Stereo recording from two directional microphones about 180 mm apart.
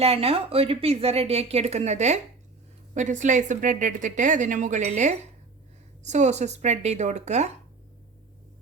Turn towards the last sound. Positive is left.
turn(degrees=-40)  # may be behind; listen again after turning